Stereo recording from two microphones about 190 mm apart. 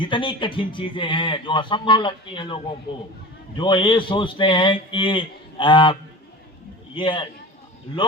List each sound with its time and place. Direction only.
0.0 s speech: 25° left (ahead or behind)